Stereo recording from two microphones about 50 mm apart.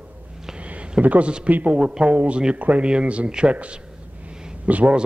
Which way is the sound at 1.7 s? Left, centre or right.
Centre.